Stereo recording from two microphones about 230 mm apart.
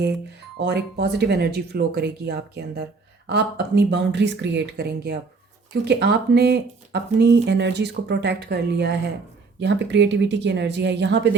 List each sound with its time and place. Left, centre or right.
0.0 s speech: right